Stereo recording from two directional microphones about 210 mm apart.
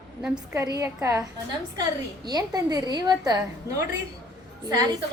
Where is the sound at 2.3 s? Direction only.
20° right (ahead or behind).